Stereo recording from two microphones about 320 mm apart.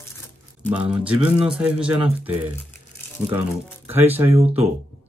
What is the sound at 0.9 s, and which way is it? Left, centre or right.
Speech, centre.